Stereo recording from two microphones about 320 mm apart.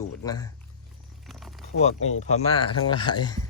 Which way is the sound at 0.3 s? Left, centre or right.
Centre.